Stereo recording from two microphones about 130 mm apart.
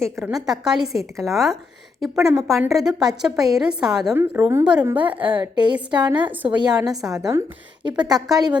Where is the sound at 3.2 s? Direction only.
5° right (ahead or behind).